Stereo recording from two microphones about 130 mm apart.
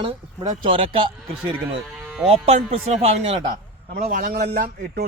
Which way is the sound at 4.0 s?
90° right.